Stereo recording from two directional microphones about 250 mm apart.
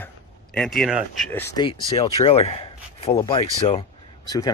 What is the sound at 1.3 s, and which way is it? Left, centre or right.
Speech, centre.